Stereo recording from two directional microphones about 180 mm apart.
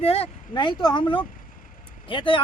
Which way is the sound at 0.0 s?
35° left (ahead or behind).